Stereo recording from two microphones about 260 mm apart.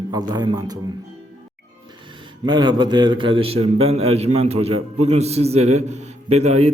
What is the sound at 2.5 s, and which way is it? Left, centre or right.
Speech, centre.